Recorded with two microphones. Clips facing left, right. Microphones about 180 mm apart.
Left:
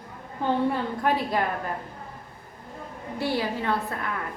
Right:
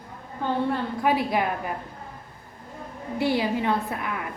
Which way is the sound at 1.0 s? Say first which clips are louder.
Right 2 dB; 10° right (ahead or behind).